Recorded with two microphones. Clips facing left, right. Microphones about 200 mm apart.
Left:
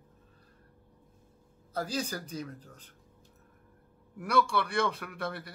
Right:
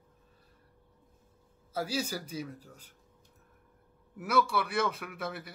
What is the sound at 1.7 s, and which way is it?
Speech, 5° right (ahead or behind).